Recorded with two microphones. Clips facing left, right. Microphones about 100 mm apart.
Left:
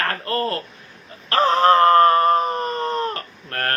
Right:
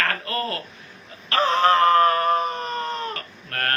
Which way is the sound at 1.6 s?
40° left (ahead or behind).